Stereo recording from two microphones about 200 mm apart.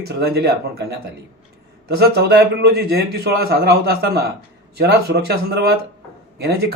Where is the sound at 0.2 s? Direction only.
55° right (ahead or behind).